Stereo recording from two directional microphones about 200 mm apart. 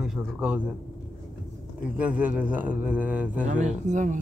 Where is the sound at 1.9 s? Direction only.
5° right (ahead or behind).